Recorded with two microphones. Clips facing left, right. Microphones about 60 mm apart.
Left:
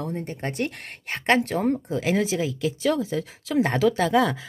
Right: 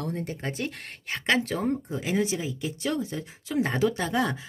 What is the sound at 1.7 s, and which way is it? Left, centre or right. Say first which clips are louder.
Speech: left 4 dB; left.